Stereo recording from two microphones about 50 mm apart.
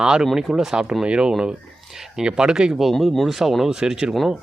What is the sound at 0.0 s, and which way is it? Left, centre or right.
Speech, centre.